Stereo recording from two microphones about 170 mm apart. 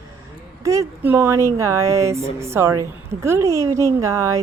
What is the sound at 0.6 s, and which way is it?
A woman's voice, 15° right (ahead or behind).